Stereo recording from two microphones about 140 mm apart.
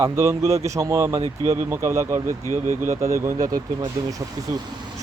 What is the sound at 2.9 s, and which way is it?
Speech, 20° right (ahead or behind).